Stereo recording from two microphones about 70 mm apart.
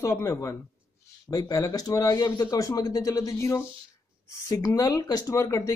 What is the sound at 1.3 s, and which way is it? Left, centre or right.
Speech, left.